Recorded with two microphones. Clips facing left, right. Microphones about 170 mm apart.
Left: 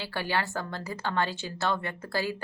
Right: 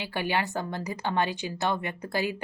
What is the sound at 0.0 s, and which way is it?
A woman's voice, 15° right (ahead or behind).